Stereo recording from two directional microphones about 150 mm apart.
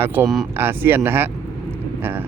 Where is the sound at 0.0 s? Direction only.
15° right (ahead or behind).